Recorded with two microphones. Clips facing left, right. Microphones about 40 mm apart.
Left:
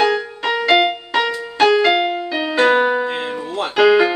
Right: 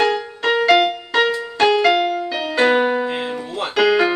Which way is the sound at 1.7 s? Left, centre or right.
Centre.